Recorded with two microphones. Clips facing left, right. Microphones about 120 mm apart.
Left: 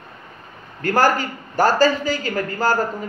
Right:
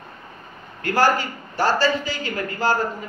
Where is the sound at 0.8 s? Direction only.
45° left (ahead or behind).